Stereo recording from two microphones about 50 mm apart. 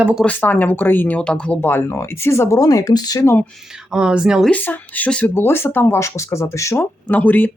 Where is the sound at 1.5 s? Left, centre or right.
Left.